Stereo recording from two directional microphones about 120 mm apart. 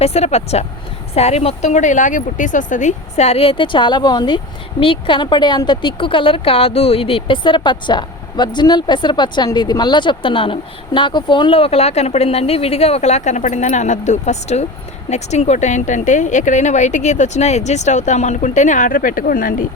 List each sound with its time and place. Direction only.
0.0 s speech: 60° left (ahead or behind); by 18.9 s 90° left